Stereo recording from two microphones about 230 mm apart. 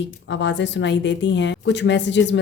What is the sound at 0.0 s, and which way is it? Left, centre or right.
A woman's voice, left.